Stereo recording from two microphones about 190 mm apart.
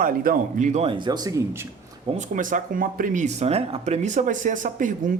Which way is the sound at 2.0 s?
40° right (ahead or behind).